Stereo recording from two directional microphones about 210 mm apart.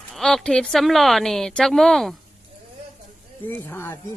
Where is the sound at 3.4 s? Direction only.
10° left (ahead or behind).